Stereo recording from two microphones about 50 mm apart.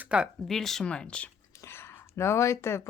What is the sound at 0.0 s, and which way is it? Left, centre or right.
Speech, right.